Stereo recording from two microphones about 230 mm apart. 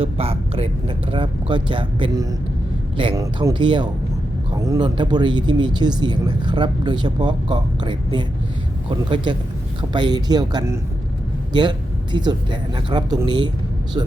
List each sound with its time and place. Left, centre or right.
0.0 s speech: right
12.1 s speech: centre